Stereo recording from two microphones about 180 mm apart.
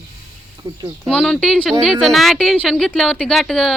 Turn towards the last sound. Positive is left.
turn(degrees=0)  # may be behind; listen again after turning